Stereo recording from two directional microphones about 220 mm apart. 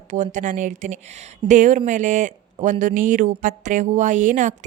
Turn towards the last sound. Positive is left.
turn(degrees=-35)  # may be behind; listen again after turning